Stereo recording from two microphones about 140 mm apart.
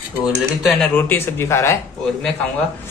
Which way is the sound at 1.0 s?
15° left (ahead or behind).